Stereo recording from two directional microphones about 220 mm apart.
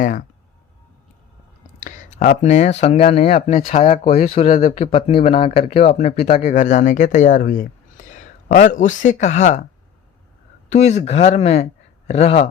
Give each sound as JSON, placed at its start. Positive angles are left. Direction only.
{"t": 1.8, "sound": "speech", "side_deg": 35}
{"t": 10.7, "sound": "speech", "side_deg": 30}